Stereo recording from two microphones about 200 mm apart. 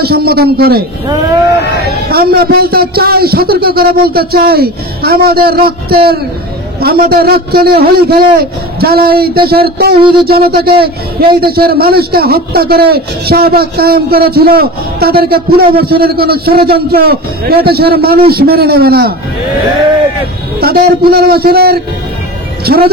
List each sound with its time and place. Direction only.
0.0 s a man's voice: 50° right (ahead or behind)
1.6 s speech: 55° left (ahead or behind)
2.0 s a man's voice: 50° right (ahead or behind)
20.6 s a man's voice: 50° right (ahead or behind)